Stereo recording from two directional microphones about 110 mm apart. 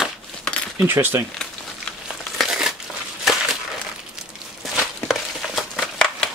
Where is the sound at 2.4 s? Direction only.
5° right (ahead or behind).